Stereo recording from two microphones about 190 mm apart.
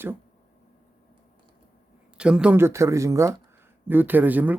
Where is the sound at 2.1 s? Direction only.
5° right (ahead or behind).